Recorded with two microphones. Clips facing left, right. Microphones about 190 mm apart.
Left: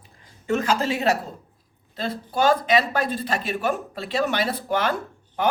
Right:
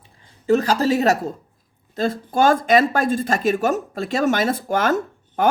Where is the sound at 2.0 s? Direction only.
45° right (ahead or behind).